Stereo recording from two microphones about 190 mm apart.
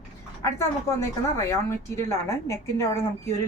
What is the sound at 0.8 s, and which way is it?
A woman's voice, 15° left (ahead or behind).